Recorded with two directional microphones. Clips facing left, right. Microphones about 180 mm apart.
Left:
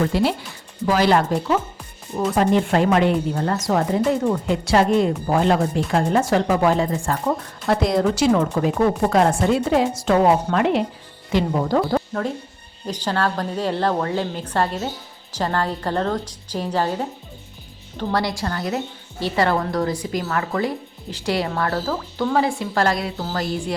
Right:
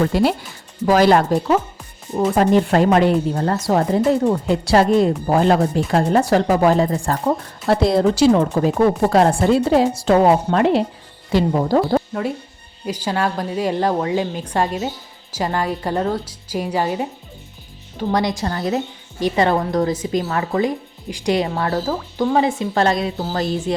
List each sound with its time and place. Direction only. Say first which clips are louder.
0.1 s speech: right 3 dB; 45° right (ahead or behind)
2.1 s speech: right 3 dB; 30° right (ahead or behind)
2.4 s speech: right 3 dB; 40° right (ahead or behind)
12.8 s a woman's voice: right 1 dB; 10° right (ahead or behind)